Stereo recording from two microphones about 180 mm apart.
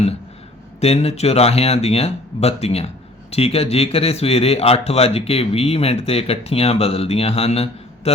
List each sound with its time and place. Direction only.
0.8 s speech: 35° left (ahead or behind)